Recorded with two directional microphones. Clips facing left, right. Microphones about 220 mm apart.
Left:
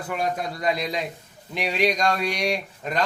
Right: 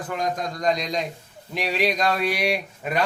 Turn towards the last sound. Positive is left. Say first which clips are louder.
# right 1 dB
turn(degrees=-10)  # may be behind; listen again after turning